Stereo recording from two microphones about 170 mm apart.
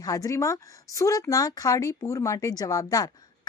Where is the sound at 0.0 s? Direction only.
20° left (ahead or behind).